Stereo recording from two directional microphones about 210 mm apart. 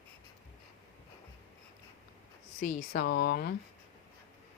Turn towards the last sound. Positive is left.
turn(degrees=45)  # may be behind; listen again after turning